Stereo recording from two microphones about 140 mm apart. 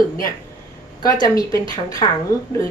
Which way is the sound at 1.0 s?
25° left (ahead or behind).